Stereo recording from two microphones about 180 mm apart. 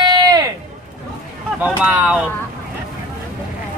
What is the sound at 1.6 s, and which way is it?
Speech, 10° right (ahead or behind).